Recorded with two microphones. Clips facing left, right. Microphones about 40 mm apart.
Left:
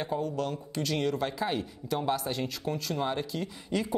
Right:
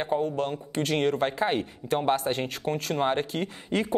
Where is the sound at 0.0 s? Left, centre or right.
Right.